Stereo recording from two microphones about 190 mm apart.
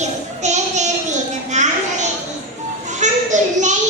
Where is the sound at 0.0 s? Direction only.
35° right (ahead or behind).